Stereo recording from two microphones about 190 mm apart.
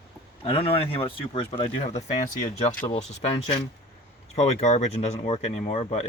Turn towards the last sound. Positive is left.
turn(degrees=35)  # may be behind; listen again after turning